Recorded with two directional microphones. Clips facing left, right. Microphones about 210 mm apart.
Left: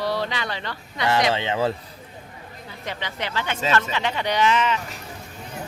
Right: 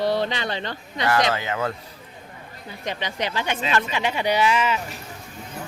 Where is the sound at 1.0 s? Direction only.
25° left (ahead or behind).